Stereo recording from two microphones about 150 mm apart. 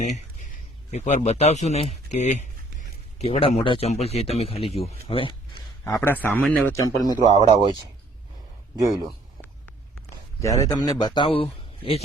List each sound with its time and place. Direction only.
0.0 s a man's voice: 55° left (ahead or behind); by 5.4 s 35° left (ahead or behind)
5.9 s a man's voice: 10° left (ahead or behind)
7.0 s speech: 30° right (ahead or behind)
8.8 s speech: 20° right (ahead or behind)
10.4 s a man's voice: 20° left (ahead or behind); by 12.0 s 40° left (ahead or behind)